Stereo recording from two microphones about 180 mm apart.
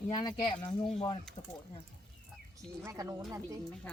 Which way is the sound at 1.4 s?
40° left (ahead or behind).